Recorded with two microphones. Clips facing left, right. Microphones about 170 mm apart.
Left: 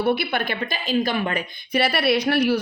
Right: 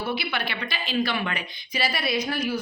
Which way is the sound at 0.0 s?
55° left (ahead or behind).